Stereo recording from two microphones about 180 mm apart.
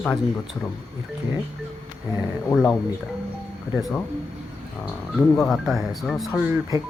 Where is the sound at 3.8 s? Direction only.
Centre (ahead or behind).